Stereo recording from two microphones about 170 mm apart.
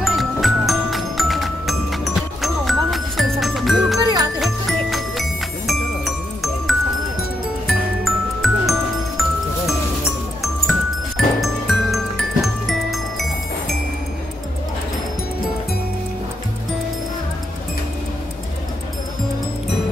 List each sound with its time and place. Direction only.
0.0 s music: centre (ahead or behind)
10.4 s music: centre (ahead or behind)